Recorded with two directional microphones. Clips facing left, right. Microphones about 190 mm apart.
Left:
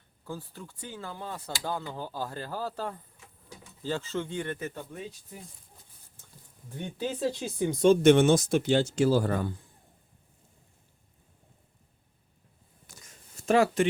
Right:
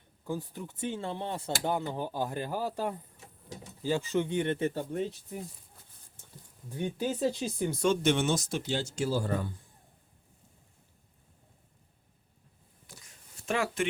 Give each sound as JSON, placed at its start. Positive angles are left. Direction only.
{"t": 0.3, "sound": "speech", "side_deg": -15}
{"t": 3.2, "sound": "a sound", "side_deg": -40}
{"t": 3.8, "sound": "speech", "side_deg": -15}
{"t": 6.7, "sound": "speech", "side_deg": -10}
{"t": 7.3, "sound": "speech", "side_deg": 0}
{"t": 8.0, "sound": "speech", "side_deg": 55}
{"t": 12.9, "sound": "a sound", "side_deg": 40}